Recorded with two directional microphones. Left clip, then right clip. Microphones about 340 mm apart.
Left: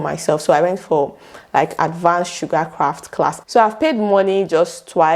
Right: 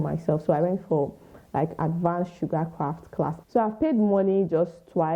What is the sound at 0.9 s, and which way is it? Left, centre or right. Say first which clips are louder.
Speech: left 9 dB; left.